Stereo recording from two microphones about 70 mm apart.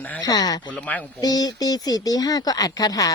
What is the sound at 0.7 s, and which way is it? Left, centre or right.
Speech, left.